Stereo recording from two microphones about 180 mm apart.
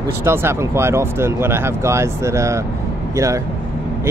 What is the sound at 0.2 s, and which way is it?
Speech, 15° right (ahead or behind).